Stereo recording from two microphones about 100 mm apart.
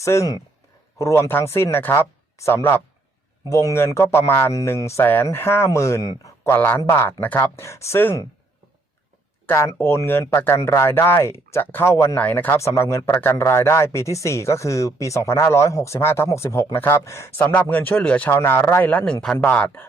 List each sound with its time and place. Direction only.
0.0 s speech: 30° left (ahead or behind)
6.5 s speech: 20° left (ahead or behind)
9.5 s speech: 25° left (ahead or behind)